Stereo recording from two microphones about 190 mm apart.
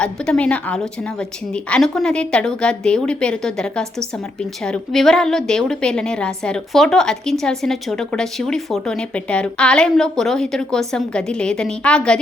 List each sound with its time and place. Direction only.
0.0 s a woman's voice: 5° left (ahead or behind)